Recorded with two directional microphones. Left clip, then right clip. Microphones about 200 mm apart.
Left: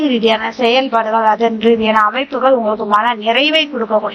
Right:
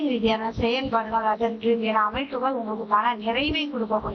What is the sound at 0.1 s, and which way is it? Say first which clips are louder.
A woman's voice: left 10 dB; 30° left (ahead or behind).